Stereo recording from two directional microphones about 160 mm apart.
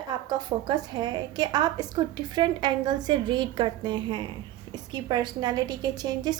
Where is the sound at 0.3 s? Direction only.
25° right (ahead or behind).